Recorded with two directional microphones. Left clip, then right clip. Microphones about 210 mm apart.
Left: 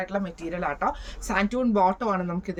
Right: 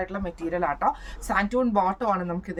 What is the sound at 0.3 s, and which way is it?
Speech, 15° right (ahead or behind).